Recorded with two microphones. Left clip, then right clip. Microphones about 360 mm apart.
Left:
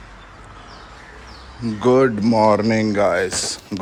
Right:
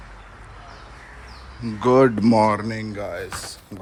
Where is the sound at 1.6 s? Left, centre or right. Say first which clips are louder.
Left 1 dB; centre.